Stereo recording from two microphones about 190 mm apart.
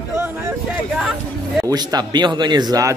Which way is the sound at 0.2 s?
10° right (ahead or behind).